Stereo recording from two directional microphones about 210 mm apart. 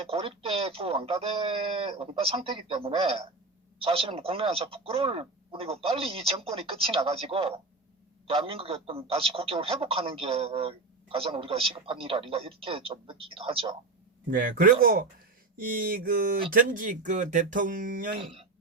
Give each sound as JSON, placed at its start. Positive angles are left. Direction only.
{"t": 0.1, "sound": "a man's voice", "side_deg": -25}
{"t": 14.3, "sound": "a sound", "side_deg": -40}
{"t": 16.5, "sound": "speech", "side_deg": -40}
{"t": 18.2, "sound": "a man's voice", "side_deg": -25}